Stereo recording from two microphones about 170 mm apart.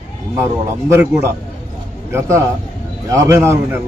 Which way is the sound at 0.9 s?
15° right (ahead or behind).